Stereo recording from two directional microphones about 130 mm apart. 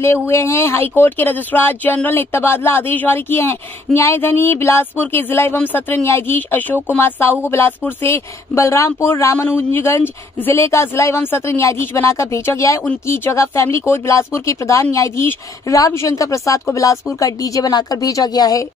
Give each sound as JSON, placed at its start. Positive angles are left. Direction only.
{"t": 0.3, "sound": "speech", "side_deg": 20}